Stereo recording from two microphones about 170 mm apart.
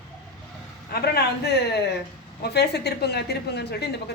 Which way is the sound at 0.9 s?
70° left (ahead or behind).